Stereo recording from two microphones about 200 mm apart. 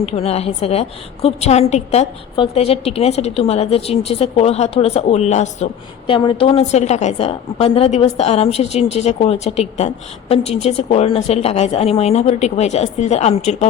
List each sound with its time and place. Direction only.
0.0 s a woman's voice: 30° left (ahead or behind)